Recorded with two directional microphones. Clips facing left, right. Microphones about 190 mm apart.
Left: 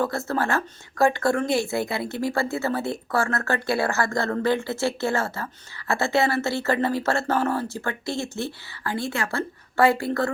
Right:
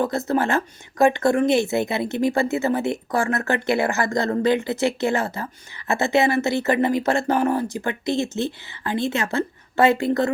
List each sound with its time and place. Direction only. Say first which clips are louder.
0.0 s speech: right 3 dB; 20° right (ahead or behind)